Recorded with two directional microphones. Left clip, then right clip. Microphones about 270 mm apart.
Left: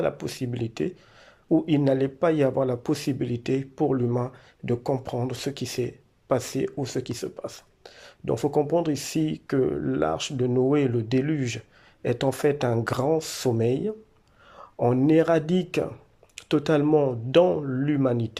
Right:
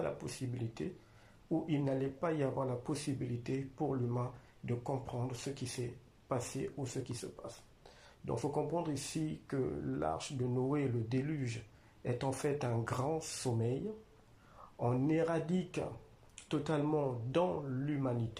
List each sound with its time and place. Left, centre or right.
0.0 s speech: left
14.8 s speech: left